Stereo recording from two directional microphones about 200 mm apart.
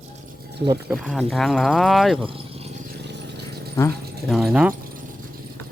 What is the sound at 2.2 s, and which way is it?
Dog, 25° right (ahead or behind).